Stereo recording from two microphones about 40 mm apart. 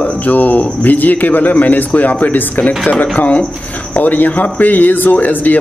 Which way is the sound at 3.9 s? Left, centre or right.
Left.